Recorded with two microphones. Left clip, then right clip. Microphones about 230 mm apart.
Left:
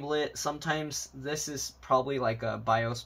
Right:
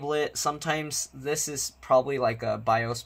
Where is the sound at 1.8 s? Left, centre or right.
Right.